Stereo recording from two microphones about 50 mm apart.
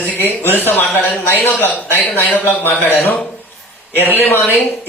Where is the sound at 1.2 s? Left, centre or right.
Left.